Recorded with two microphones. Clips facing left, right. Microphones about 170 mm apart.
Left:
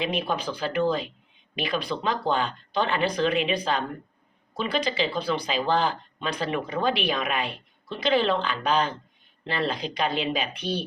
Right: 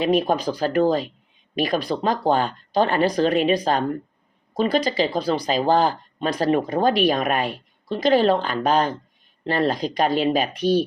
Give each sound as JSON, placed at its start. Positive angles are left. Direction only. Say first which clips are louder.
{"t": 0.0, "sound": "speech", "louder": "right 8 dB", "side_deg": -40}